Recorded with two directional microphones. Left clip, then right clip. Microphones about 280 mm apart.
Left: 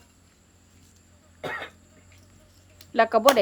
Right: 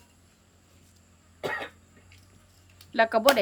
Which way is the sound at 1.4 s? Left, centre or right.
Right.